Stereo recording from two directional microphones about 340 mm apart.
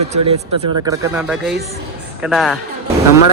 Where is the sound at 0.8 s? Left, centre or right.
Centre.